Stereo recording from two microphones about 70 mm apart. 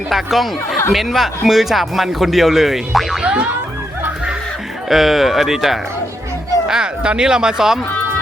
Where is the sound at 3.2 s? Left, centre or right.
Centre.